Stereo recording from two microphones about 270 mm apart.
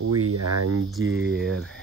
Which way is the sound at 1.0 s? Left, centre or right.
Right.